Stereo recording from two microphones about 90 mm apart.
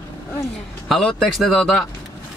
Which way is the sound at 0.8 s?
5° left (ahead or behind).